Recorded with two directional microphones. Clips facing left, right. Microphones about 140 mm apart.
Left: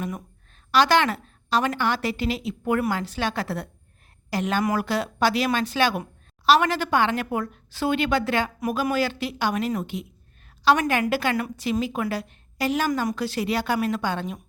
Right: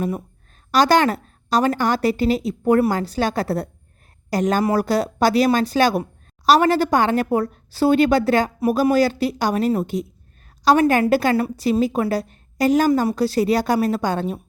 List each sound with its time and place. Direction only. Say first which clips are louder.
0.7 s speech: right 4 dB; 40° right (ahead or behind)